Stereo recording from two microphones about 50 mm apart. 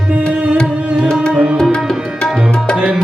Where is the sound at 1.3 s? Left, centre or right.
Centre.